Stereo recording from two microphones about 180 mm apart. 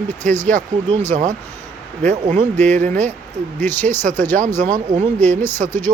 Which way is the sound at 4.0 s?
45° right (ahead or behind).